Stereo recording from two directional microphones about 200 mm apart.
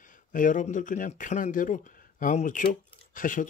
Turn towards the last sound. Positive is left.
turn(degrees=40)  # may be behind; listen again after turning